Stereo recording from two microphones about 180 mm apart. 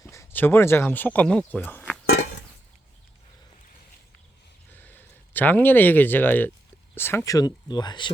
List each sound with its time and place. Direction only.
0.1 s speech: 15° left (ahead or behind)
4.7 s a sound: 10° left (ahead or behind)
6.9 s speech: 10° left (ahead or behind)